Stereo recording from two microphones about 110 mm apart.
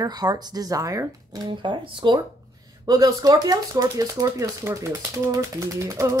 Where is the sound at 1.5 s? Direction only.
50° right (ahead or behind).